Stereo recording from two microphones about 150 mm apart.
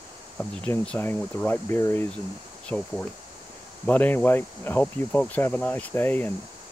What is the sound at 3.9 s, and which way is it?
Speech, 10° left (ahead or behind).